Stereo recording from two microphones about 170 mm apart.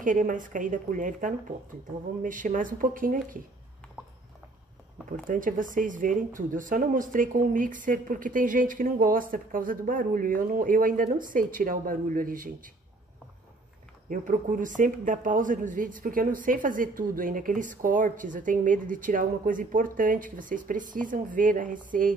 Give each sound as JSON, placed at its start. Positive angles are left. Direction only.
{"t": 0.0, "sound": "speech", "side_deg": -50}
{"t": 5.1, "sound": "speech", "side_deg": -50}
{"t": 14.0, "sound": "speech", "side_deg": -50}